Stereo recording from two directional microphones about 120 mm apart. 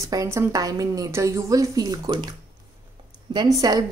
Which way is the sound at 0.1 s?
25° right (ahead or behind).